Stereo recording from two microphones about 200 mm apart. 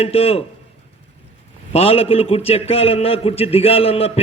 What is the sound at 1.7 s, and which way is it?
A man's voice, 30° left (ahead or behind).